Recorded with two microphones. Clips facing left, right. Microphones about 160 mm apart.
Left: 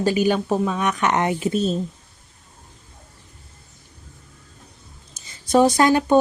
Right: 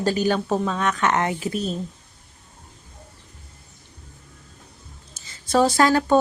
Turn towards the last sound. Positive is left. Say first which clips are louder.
# left 2 dB
turn(degrees=20)  # may be behind; listen again after turning